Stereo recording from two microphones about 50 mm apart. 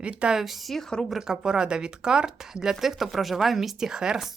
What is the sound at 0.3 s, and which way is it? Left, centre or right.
Speech, centre.